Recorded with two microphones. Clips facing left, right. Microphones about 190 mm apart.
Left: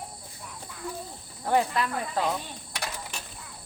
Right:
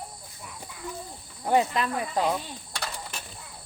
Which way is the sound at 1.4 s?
20° right (ahead or behind).